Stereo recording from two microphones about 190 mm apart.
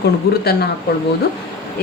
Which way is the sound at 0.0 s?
55° left (ahead or behind).